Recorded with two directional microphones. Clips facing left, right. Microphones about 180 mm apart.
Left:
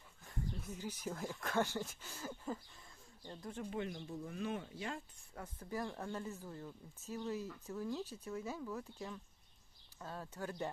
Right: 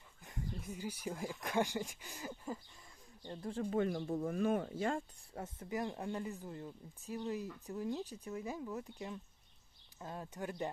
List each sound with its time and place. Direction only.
0.3 s speech: 15° right (ahead or behind)
3.2 s speech: 30° right (ahead or behind)
3.7 s speech: 45° right (ahead or behind)
5.3 s speech: 25° right (ahead or behind)